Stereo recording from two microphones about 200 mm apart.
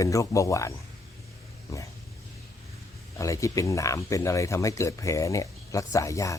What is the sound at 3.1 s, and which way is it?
Speech, 15° left (ahead or behind).